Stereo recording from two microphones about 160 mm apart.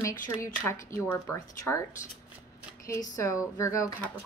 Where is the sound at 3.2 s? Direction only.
20° left (ahead or behind).